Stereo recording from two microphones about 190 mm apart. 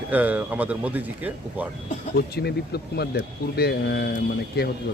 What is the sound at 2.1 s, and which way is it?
Speech, 55° left (ahead or behind).